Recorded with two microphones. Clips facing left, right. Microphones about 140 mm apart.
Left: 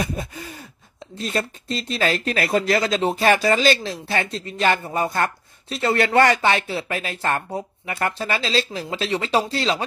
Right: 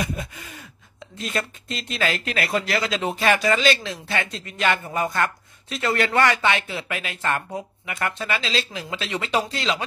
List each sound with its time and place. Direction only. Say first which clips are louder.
0.0 s speech: left 2 dB; 35° left (ahead or behind)